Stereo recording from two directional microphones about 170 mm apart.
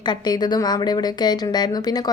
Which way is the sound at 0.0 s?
25° left (ahead or behind).